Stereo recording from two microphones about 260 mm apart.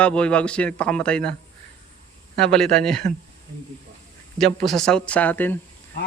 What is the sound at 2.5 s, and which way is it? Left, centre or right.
Speech, centre.